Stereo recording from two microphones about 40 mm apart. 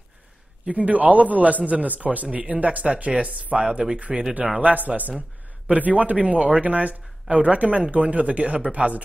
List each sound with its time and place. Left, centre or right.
0.7 s speech: right
4.6 s speech: right